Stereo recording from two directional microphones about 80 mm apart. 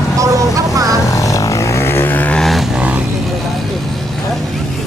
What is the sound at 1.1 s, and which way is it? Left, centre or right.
Vehicle, left.